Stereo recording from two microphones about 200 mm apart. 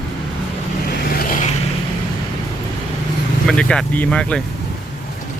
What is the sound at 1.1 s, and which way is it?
Vehicle, 45° left (ahead or behind).